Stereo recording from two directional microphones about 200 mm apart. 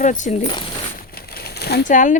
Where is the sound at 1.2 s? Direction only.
50° left (ahead or behind).